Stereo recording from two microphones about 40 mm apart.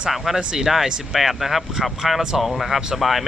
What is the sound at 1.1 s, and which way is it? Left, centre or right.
Speech, centre.